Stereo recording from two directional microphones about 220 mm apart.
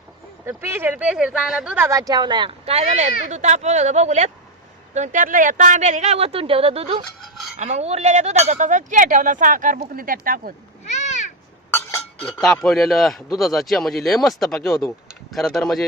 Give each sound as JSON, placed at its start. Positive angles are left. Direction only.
{"t": 0.4, "sound": "speech", "side_deg": -10}
{"t": 7.2, "sound": "dishes", "side_deg": 0}
{"t": 7.6, "sound": "speech", "side_deg": -30}
{"t": 10.8, "sound": "a sound", "side_deg": 30}
{"t": 11.7, "sound": "chink", "side_deg": 10}
{"t": 12.4, "sound": "a man's voice", "side_deg": 0}